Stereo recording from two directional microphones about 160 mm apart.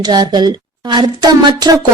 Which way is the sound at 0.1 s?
25° right (ahead or behind).